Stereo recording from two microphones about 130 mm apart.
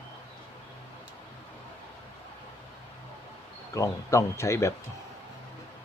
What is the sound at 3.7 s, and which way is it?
Speech, 25° left (ahead or behind).